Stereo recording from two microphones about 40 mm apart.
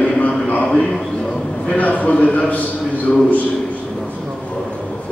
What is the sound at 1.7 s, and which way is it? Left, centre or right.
Speech, left.